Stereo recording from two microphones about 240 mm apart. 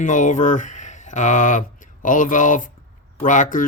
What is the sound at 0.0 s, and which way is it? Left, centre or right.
Speech, left.